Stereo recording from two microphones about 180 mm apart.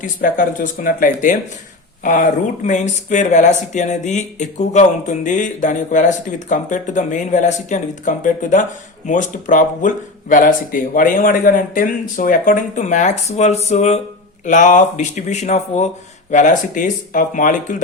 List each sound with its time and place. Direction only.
0.0 s speech: 45° left (ahead or behind)